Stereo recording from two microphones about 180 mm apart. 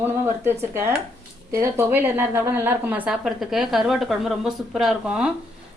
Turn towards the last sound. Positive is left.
turn(degrees=-5)  # may be behind; listen again after turning